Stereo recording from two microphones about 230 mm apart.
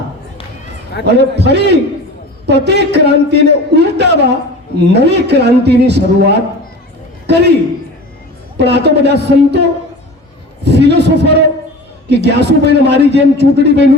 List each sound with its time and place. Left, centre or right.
1.0 s a man's voice: right
8.5 s a man's voice: right